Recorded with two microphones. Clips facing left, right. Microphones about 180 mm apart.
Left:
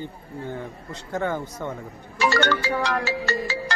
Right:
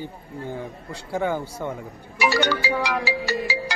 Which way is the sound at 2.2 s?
15° right (ahead or behind).